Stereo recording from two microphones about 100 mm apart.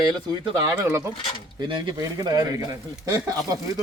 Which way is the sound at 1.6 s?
50° right (ahead or behind).